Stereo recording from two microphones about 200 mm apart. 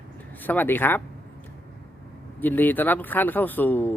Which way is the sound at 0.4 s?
10° left (ahead or behind).